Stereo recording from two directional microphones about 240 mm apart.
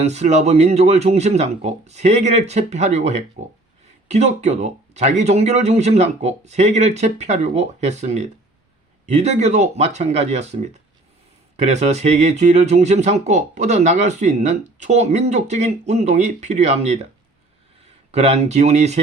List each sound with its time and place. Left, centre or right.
0.0 s speech: right
18.1 s speech: right